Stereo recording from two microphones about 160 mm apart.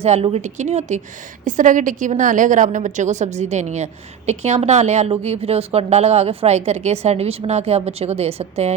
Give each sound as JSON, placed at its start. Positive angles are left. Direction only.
{"t": 0.0, "sound": "a woman's voice", "side_deg": -40}